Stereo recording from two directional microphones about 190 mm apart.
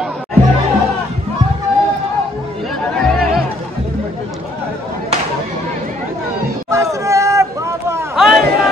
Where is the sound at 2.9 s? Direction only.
Centre (ahead or behind).